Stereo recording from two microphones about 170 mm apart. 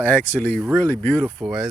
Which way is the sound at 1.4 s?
Centre (ahead or behind).